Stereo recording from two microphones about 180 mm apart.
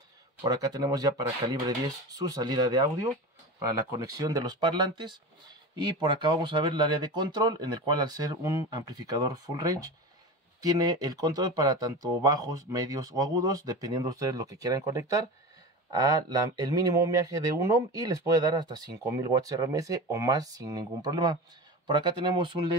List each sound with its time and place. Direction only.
0.4 s speech: 20° right (ahead or behind)
3.9 s speech: 20° right (ahead or behind)